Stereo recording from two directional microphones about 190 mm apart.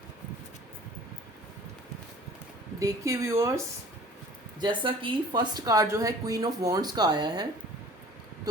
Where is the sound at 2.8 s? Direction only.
15° right (ahead or behind).